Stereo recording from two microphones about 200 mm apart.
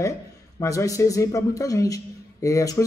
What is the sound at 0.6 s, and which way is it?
A man's voice, 15° left (ahead or behind).